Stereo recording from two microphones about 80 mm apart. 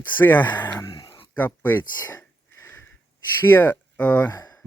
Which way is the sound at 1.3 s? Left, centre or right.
Left.